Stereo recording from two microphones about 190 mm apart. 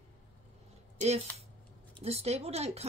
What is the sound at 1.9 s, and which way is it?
Speech, 30° right (ahead or behind).